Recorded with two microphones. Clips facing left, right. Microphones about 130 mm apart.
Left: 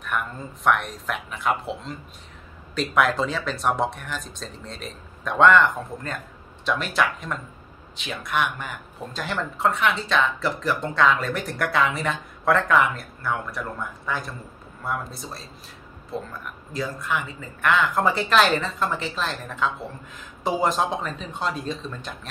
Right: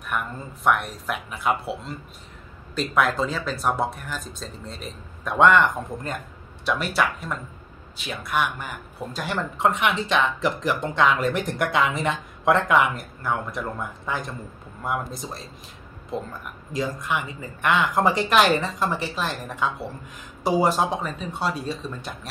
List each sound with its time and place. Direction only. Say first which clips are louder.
0.1 s speech: even; 5° right (ahead or behind)